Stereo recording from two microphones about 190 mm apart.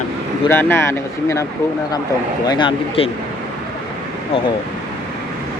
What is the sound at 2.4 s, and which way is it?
Speech, 25° left (ahead or behind).